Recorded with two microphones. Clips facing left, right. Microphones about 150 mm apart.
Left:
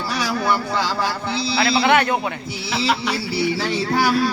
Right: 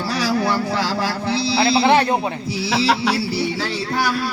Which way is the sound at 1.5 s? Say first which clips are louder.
Right 2 dB; 30° right (ahead or behind).